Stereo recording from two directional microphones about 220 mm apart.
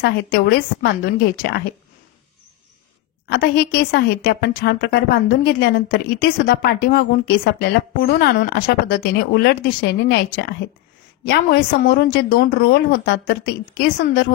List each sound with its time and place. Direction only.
0.0 s a woman's voice: 45° left (ahead or behind)
3.3 s a woman's voice: 45° left (ahead or behind)